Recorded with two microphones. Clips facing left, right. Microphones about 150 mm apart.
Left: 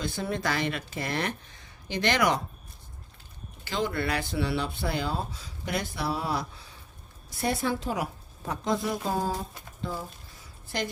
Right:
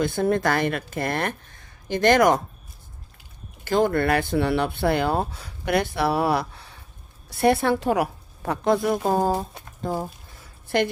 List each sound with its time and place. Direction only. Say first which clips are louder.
0.0 s speech: right 9 dB; 55° right (ahead or behind)
3.6 s speech: right 9 dB; 50° right (ahead or behind)
9.8 s a sound: right 7 dB; 45° right (ahead or behind)